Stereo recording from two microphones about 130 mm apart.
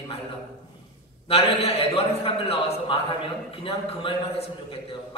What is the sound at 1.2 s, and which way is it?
A man's voice, 50° left (ahead or behind).